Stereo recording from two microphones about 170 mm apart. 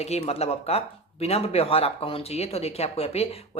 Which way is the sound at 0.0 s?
40° left (ahead or behind).